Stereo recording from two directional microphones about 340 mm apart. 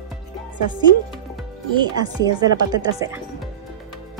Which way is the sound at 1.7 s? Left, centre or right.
Centre.